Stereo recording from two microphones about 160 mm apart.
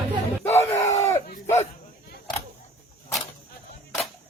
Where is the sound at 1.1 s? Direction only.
45° left (ahead or behind).